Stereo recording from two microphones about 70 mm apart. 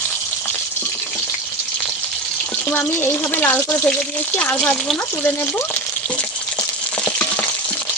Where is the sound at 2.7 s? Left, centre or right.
Left.